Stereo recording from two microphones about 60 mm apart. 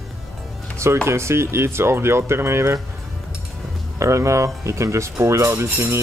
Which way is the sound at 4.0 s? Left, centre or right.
Right.